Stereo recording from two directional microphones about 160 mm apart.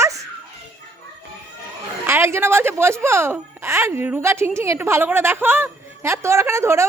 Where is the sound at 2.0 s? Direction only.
15° right (ahead or behind).